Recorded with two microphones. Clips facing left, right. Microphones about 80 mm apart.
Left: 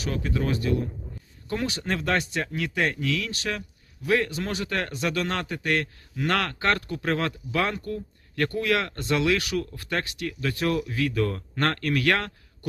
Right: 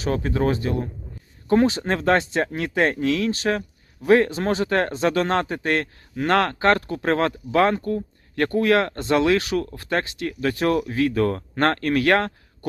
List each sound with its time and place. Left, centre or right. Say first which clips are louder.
0.0 s speech: right 6 dB; right